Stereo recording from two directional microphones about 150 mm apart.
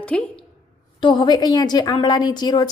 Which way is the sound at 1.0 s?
30° left (ahead or behind).